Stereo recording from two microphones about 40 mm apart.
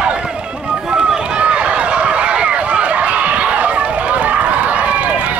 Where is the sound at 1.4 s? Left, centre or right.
Right.